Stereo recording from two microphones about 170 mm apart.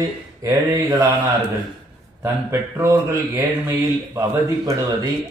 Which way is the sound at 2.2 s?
15° right (ahead or behind).